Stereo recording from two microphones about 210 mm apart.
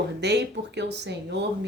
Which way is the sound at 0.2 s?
55° right (ahead or behind).